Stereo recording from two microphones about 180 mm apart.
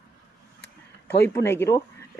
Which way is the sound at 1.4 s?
15° left (ahead or behind).